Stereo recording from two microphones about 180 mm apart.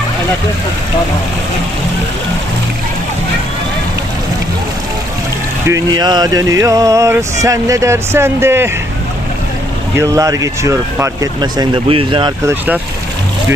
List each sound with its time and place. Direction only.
5.6 s speech: 20° right (ahead or behind)
10.0 s speech: 20° right (ahead or behind)
12.5 s speech: 10° right (ahead or behind)